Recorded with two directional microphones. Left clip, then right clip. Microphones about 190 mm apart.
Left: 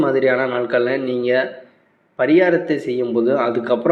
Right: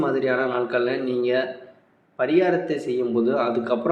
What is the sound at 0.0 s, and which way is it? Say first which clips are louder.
A man's voice: left 6 dB; 15° left (ahead or behind).